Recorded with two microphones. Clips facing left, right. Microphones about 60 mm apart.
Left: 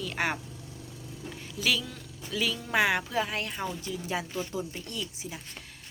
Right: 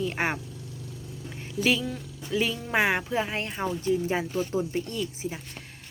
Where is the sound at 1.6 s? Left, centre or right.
Right.